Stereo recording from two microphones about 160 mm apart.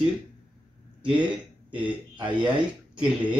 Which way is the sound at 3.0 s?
5° right (ahead or behind).